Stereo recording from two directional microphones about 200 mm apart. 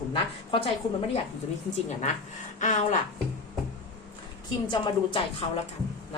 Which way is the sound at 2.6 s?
40° left (ahead or behind).